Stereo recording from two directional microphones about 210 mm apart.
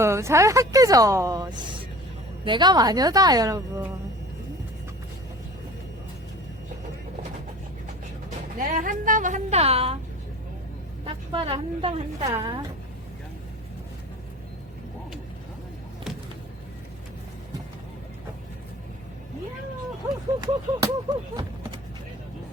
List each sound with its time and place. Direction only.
0.0 s a woman's voice: 15° right (ahead or behind)
8.5 s a woman's voice: 40° right (ahead or behind)
11.0 s a woman's voice: 25° right (ahead or behind)
20.4 s speech: 20° right (ahead or behind)